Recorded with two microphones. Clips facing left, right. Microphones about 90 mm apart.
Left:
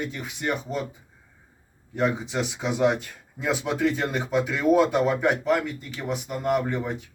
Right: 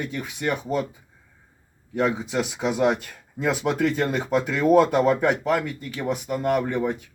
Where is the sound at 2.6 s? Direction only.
55° right (ahead or behind).